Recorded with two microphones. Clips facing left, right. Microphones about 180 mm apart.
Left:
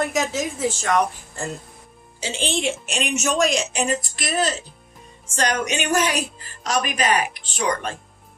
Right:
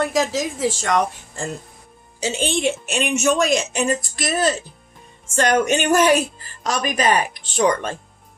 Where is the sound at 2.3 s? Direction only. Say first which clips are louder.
Right 2 dB; 50° right (ahead or behind).